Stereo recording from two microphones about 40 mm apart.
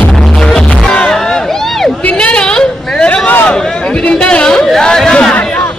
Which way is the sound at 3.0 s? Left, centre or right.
Left.